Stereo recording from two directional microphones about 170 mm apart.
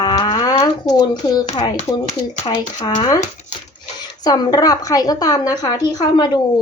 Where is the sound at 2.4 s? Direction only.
25° left (ahead or behind).